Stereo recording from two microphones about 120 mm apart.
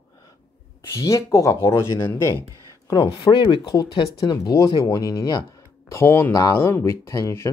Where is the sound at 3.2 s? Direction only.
45° left (ahead or behind).